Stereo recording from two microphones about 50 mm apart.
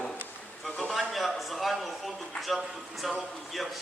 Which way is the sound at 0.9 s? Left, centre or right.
Centre.